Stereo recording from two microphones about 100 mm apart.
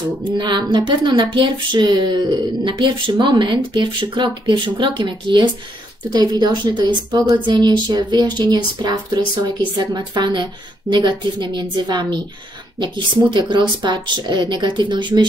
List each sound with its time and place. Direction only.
0.3 s speech: 50° right (ahead or behind)